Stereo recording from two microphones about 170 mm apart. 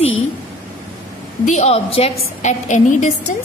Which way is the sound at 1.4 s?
40° left (ahead or behind).